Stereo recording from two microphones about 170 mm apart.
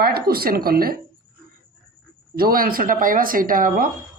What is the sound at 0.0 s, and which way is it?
Speech, 65° right (ahead or behind).